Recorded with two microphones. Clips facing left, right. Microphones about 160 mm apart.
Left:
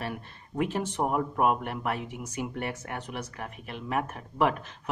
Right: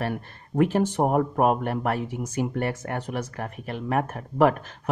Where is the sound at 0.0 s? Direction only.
50° right (ahead or behind).